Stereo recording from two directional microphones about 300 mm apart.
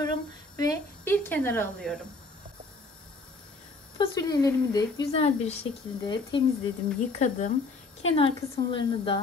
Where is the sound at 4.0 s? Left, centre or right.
Centre.